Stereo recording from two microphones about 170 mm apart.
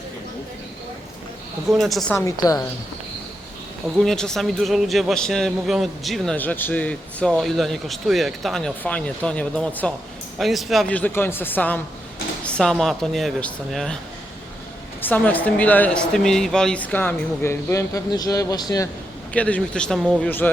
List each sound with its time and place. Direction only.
1.7 s a man's voice: centre (ahead or behind)
2.1 s a woman's voice: 20° left (ahead or behind)
3.9 s a man's voice: centre (ahead or behind)
15.0 s speech: 10° left (ahead or behind)
19.3 s speech: 10° left (ahead or behind)